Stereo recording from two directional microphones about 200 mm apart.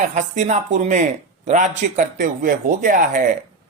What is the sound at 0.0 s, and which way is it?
A man's voice, 40° right (ahead or behind).